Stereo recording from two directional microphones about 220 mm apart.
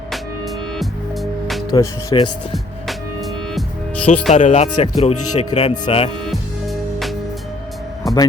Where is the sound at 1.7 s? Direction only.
15° left (ahead or behind).